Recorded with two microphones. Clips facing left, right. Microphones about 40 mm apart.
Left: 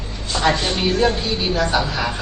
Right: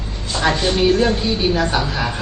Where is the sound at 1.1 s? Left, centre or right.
Centre.